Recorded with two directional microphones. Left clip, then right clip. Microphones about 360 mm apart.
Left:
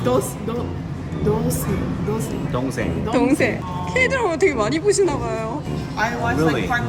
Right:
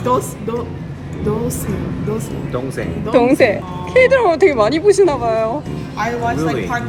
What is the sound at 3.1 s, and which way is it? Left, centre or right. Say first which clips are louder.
Speech: right 7 dB; centre.